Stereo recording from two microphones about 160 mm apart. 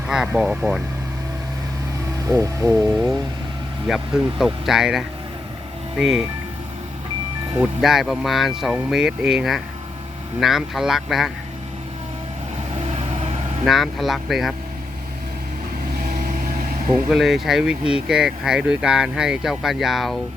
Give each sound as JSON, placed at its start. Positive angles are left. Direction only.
{"t": 0.1, "sound": "speech", "side_deg": -5}
{"t": 2.2, "sound": "speech", "side_deg": -20}
{"t": 3.8, "sound": "speech", "side_deg": 0}
{"t": 7.5, "sound": "speech", "side_deg": -5}
{"t": 12.8, "sound": "vehicle", "side_deg": -40}
{"t": 13.7, "sound": "speech", "side_deg": 0}
{"t": 16.0, "sound": "vehicle", "side_deg": -55}
{"t": 17.1, "sound": "speech", "side_deg": 0}